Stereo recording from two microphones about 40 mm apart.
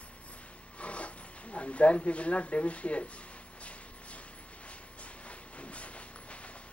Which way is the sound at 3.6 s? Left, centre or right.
Left.